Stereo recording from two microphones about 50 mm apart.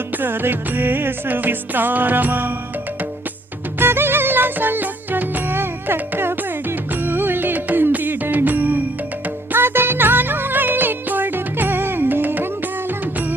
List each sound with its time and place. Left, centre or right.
0.2 s music: right
3.8 s music: right